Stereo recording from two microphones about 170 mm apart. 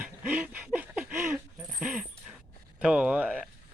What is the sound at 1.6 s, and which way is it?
Dog, 5° right (ahead or behind).